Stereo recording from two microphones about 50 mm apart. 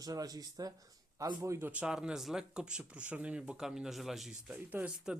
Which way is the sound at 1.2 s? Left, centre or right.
Right.